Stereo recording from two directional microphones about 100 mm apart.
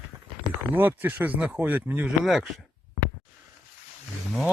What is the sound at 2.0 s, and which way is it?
Speech, centre (ahead or behind).